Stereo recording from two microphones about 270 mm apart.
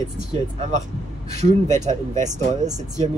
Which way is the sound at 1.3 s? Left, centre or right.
Right.